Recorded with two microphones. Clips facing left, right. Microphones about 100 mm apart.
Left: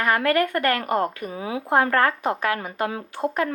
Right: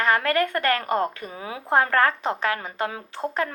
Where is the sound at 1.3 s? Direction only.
25° left (ahead or behind).